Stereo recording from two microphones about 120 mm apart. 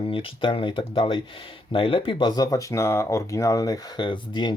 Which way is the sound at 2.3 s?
30° left (ahead or behind).